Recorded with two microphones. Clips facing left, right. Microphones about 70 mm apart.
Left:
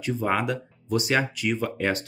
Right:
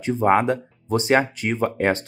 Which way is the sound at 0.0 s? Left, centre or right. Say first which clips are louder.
Right 7 dB; right.